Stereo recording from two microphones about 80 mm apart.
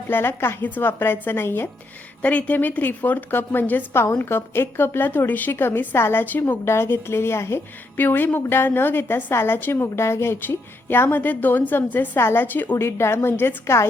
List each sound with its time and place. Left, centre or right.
0.1 s a woman's voice: left
2.2 s a woman's voice: centre
12.7 s a woman's voice: left